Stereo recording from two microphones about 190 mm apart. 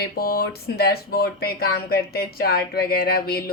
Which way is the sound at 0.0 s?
50° left (ahead or behind).